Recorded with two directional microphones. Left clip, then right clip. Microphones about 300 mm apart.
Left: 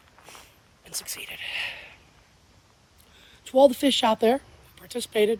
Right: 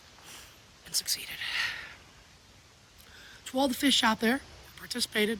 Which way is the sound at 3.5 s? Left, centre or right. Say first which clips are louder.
Left 8 dB; centre.